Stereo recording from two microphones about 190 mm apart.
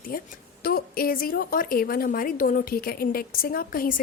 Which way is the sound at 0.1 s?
50° left (ahead or behind).